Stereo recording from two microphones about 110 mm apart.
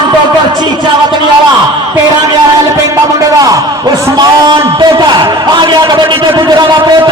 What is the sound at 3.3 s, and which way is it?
A man's voice, 35° right (ahead or behind).